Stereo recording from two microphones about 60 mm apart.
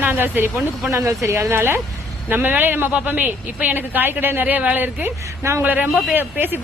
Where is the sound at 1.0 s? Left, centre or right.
Right.